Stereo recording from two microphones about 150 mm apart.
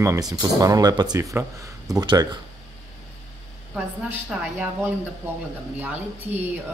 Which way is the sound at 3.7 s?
10° right (ahead or behind).